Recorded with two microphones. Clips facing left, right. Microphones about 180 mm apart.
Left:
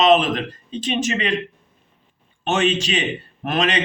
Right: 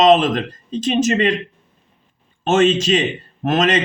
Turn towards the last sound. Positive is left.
turn(degrees=-40)  # may be behind; listen again after turning